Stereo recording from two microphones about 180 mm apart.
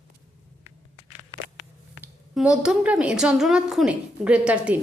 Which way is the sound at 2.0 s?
5° right (ahead or behind).